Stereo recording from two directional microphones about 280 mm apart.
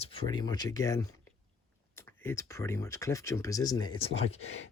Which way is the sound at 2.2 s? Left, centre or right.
Centre.